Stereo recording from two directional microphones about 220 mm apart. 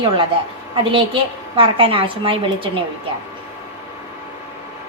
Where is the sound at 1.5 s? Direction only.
25° right (ahead or behind).